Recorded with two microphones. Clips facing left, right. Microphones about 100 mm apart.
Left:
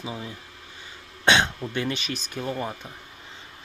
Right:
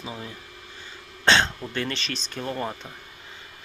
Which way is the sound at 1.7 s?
15° left (ahead or behind).